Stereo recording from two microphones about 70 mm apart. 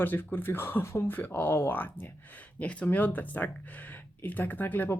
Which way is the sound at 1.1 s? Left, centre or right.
Left.